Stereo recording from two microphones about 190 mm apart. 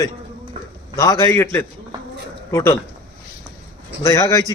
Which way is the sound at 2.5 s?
15° left (ahead or behind).